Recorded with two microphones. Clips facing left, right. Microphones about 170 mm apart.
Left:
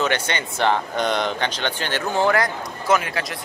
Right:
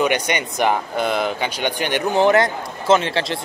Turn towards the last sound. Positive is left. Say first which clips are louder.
# right 4 dB
turn(degrees=-25)  # may be behind; listen again after turning